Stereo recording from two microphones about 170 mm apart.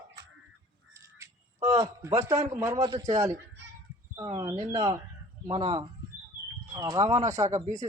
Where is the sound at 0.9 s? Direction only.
15° right (ahead or behind).